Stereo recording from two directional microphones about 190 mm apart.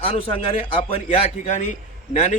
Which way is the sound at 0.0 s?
30° left (ahead or behind).